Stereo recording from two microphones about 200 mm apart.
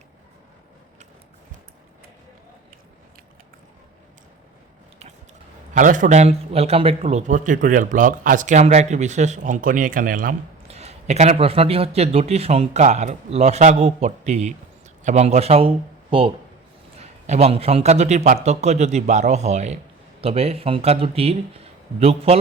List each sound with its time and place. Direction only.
5.7 s a man's voice: 40° right (ahead or behind)
10.7 s a man's voice: 30° right (ahead or behind)